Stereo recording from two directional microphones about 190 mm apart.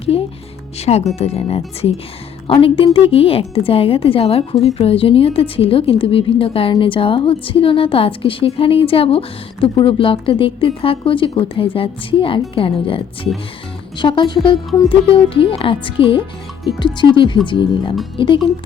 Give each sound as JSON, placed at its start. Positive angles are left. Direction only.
{"t": 0.1, "sound": "a woman's voice", "side_deg": 30}